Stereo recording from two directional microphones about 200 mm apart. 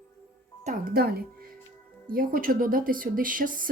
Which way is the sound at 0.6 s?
45° right (ahead or behind).